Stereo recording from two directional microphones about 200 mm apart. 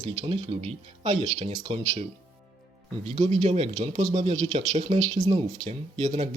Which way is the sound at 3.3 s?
35° right (ahead or behind).